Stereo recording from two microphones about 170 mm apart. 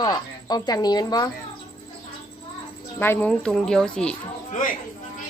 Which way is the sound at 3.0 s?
10° left (ahead or behind).